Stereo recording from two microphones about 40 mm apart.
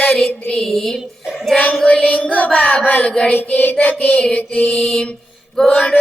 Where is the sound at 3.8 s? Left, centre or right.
Left.